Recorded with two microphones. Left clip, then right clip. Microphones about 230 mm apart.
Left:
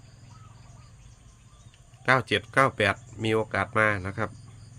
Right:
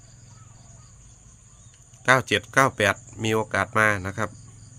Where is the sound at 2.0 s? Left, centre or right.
Right.